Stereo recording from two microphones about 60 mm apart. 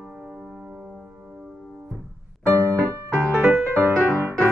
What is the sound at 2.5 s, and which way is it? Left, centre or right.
Music, right.